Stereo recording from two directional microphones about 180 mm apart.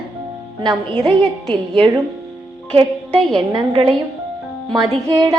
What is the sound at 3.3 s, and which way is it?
Speech, 25° right (ahead or behind).